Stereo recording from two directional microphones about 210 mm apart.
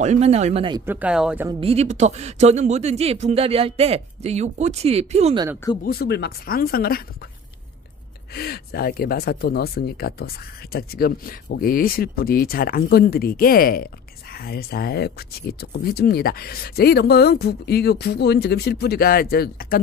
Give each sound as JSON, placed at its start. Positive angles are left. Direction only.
{"t": 0.0, "sound": "speech", "side_deg": -30}
{"t": 0.8, "sound": "speech", "side_deg": -5}
{"t": 1.6, "sound": "speech", "side_deg": -30}
{"t": 5.9, "sound": "speech", "side_deg": 50}
{"t": 8.3, "sound": "speech", "side_deg": 50}